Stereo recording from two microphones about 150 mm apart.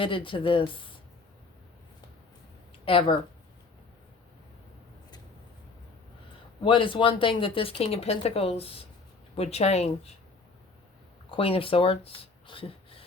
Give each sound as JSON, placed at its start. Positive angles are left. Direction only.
{"t": 0.0, "sound": "speech", "side_deg": 35}
{"t": 2.8, "sound": "speech", "side_deg": 35}
{"t": 6.6, "sound": "speech", "side_deg": 35}
{"t": 11.3, "sound": "speech", "side_deg": 40}